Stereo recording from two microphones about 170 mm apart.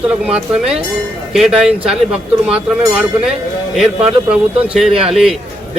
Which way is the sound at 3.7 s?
Centre (ahead or behind).